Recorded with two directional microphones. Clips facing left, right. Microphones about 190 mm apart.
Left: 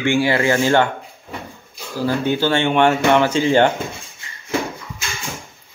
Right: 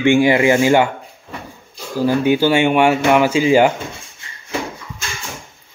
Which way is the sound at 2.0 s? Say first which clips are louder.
Right 4 dB; 15° right (ahead or behind).